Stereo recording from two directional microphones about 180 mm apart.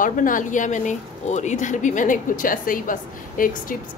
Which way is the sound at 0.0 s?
50° left (ahead or behind).